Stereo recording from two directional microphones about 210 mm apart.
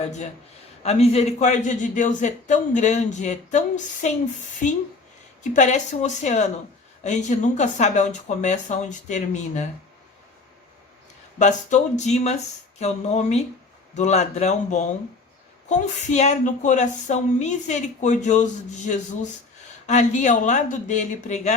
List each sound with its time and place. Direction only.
0.0 s speech: 35° left (ahead or behind)
5.4 s speech: 35° left (ahead or behind)
11.3 s speech: 35° left (ahead or behind)